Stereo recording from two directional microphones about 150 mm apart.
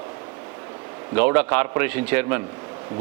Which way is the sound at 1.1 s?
10° right (ahead or behind).